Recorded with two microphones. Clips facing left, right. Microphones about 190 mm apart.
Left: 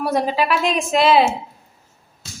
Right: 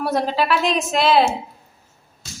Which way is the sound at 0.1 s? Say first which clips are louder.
Left 1 dB; 5° left (ahead or behind).